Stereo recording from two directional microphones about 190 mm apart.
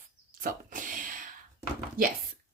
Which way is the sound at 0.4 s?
45° right (ahead or behind).